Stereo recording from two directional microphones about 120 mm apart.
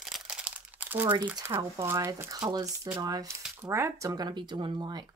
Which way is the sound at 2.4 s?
35° right (ahead or behind).